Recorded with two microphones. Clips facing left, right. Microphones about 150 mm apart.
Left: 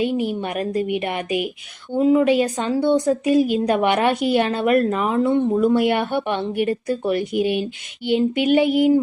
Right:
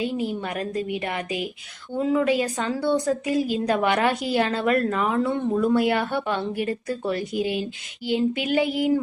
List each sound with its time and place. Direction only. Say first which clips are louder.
0.1 s a woman's voice: left 4 dB; 70° left (ahead or behind)
0.4 s a woman's voice: left 5 dB; 20° left (ahead or behind)
8.4 s a woman's voice: left 6 dB; 20° left (ahead or behind)